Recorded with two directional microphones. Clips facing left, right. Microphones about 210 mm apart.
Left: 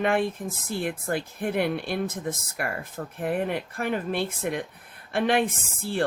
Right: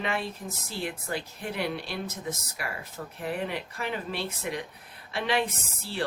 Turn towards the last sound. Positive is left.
turn(degrees=50)  # may be behind; listen again after turning